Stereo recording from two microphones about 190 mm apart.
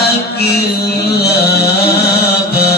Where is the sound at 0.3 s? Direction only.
55° left (ahead or behind).